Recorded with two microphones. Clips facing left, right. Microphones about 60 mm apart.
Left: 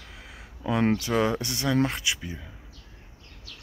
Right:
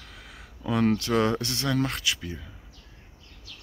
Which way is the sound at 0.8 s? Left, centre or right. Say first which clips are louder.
Right 1 dB; left.